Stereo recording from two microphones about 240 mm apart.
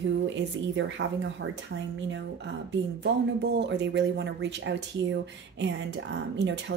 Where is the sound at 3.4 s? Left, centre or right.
Right.